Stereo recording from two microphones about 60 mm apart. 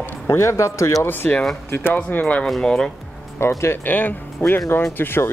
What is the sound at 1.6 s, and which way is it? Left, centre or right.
Speech, left.